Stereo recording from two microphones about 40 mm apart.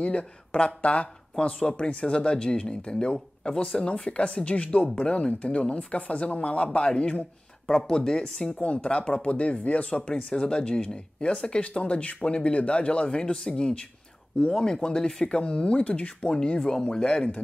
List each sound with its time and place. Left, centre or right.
0.0 s speech: left
7.7 s speech: centre
13.2 s speech: centre
16.5 s speech: centre